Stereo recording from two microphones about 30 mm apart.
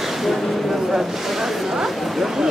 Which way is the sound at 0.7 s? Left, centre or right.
Centre.